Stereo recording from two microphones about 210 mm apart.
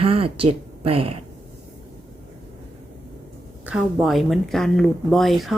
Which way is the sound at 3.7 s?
5° right (ahead or behind).